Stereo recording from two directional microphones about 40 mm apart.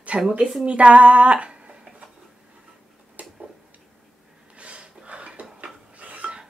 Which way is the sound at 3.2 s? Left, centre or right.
Right.